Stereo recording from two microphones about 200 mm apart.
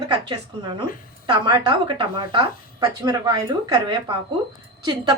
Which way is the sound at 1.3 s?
25° right (ahead or behind).